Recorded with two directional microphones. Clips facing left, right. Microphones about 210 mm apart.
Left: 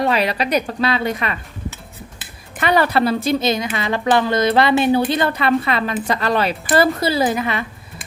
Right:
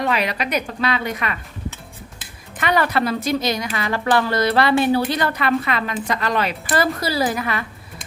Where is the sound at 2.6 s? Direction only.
30° left (ahead or behind).